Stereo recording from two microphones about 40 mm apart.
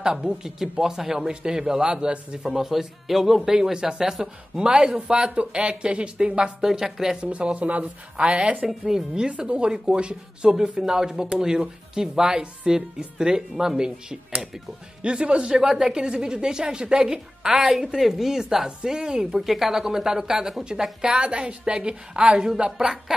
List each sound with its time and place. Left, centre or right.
0.0 s speech: centre
4.2 s speech: right
7.2 s speech: right
8.6 s speech: centre
15.5 s speech: centre
18.8 s speech: right
19.3 s speech: centre